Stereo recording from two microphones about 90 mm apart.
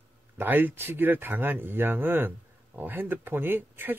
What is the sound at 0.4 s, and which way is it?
Speech, 20° right (ahead or behind).